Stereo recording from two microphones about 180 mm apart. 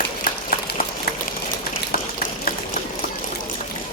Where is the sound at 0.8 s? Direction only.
55° left (ahead or behind).